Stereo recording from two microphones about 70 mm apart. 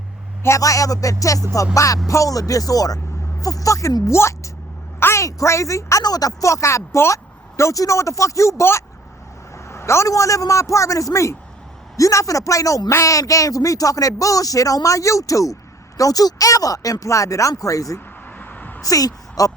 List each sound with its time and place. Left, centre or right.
0.4 s a woman's voice: left
4.9 s a sound: left
5.2 s a woman's voice: left
6.0 s speech: left
6.5 s a woman's voice: left
18.3 s a sound: left
18.8 s a woman's voice: left